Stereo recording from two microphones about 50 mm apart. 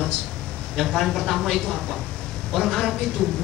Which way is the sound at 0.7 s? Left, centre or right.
Centre.